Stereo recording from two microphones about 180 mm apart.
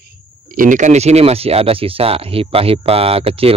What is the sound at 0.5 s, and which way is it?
Speech, 50° right (ahead or behind).